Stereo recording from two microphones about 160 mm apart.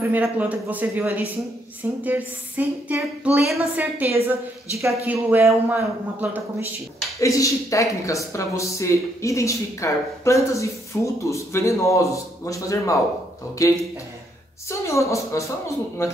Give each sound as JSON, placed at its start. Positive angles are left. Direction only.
{"t": 0.1, "sound": "a woman's voice", "side_deg": -10}
{"t": 7.2, "sound": "speech", "side_deg": 20}